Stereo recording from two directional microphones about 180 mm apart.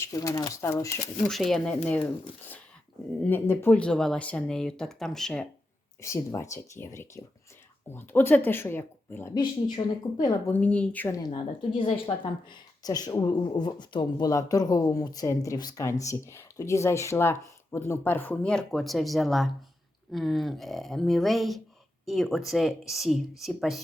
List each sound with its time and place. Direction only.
0.0 s speech: 20° left (ahead or behind)
1.3 s speech: centre (ahead or behind)
3.2 s speech: 10° left (ahead or behind)
6.0 s speech: 15° left (ahead or behind)
9.7 s speech: 20° left (ahead or behind)
10.5 s speech: 5° left (ahead or behind)
11.2 s speech: 25° left (ahead or behind); by 23.8 s centre (ahead or behind)